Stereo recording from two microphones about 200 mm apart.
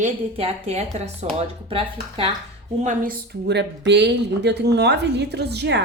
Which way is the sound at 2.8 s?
45° right (ahead or behind).